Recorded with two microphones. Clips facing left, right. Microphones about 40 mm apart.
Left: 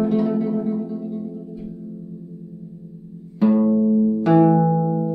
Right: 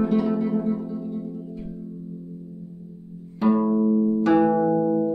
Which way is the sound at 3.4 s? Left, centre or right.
Centre.